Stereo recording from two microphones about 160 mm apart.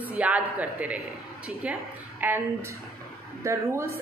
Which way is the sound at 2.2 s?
10° right (ahead or behind).